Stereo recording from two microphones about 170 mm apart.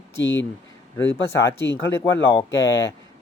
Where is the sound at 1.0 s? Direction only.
15° left (ahead or behind).